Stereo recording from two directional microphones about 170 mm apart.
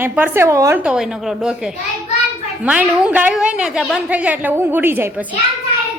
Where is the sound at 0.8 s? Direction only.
5° right (ahead or behind).